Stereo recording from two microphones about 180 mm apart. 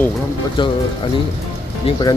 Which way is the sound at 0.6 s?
30° left (ahead or behind).